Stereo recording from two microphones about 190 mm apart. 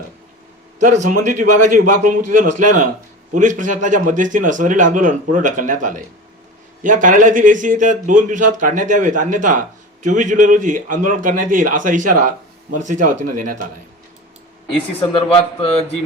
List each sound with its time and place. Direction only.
0.8 s speech: 40° right (ahead or behind)
15.1 s a man's voice: 30° left (ahead or behind)